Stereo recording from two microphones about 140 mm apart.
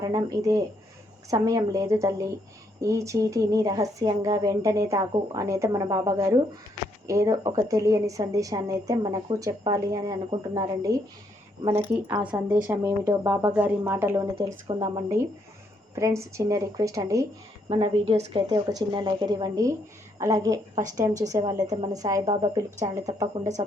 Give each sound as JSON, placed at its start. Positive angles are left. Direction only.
{"t": 0.0, "sound": "a woman's voice", "side_deg": -25}
{"t": 12.0, "sound": "a woman's voice", "side_deg": -35}
{"t": 12.6, "sound": "speech", "side_deg": -15}
{"t": 14.3, "sound": "a woman's voice", "side_deg": -35}
{"t": 16.0, "sound": "a woman's voice", "side_deg": -20}
{"t": 17.7, "sound": "a woman's voice", "side_deg": -45}